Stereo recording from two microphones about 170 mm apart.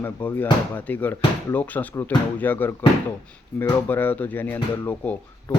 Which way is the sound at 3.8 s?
10° left (ahead or behind).